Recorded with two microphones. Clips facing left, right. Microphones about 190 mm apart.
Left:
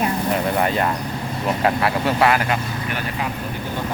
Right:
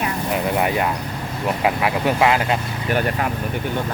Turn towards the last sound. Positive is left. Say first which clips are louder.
# right 1 dB
turn(degrees=-20)  # may be behind; listen again after turning